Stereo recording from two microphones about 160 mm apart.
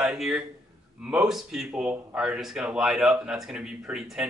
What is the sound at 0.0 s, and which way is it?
Speech, 5° right (ahead or behind).